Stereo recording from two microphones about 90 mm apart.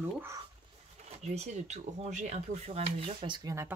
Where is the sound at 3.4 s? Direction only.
40° right (ahead or behind).